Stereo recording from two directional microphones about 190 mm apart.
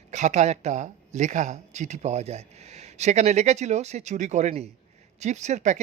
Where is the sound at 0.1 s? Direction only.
35° right (ahead or behind).